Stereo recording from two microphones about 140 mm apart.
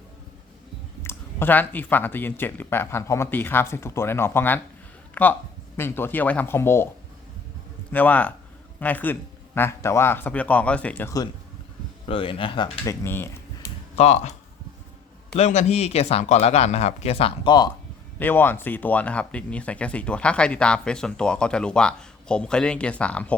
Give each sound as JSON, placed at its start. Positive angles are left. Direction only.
{"t": 1.0, "sound": "speech", "side_deg": 15}
{"t": 7.9, "sound": "speech", "side_deg": 10}
{"t": 12.0, "sound": "speech", "side_deg": 40}
{"t": 12.8, "sound": "speech", "side_deg": 20}
{"t": 13.9, "sound": "speech", "side_deg": 50}
{"t": 15.4, "sound": "speech", "side_deg": 50}
{"t": 18.2, "sound": "speech", "side_deg": 15}